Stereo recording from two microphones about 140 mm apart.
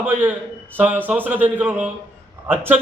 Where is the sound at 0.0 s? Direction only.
10° right (ahead or behind).